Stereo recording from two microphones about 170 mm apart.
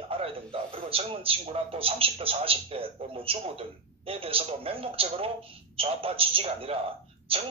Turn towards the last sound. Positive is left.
turn(degrees=-35)  # may be behind; listen again after turning